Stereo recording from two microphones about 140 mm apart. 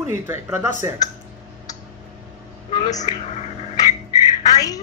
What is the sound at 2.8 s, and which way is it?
Speech, 55° left (ahead or behind).